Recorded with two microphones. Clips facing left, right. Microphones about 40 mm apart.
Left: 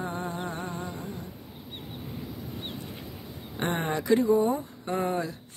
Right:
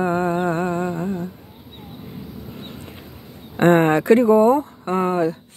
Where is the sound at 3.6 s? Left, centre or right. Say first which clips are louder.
Right 14 dB; right.